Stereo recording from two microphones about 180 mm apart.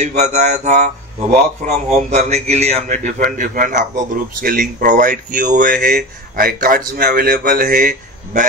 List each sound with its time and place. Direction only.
0.0 s speech: 40° right (ahead or behind)
1.9 s a man's voice: 40° right (ahead or behind)